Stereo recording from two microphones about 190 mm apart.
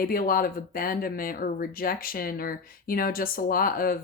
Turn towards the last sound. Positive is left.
turn(degrees=50)  # may be behind; listen again after turning